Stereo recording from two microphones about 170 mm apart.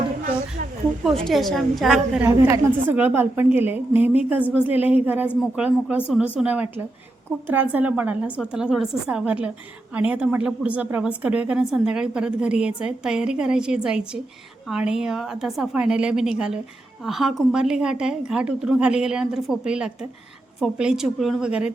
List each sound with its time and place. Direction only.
1.0 s speech: centre (ahead or behind)
2.2 s a woman's voice: 15° right (ahead or behind)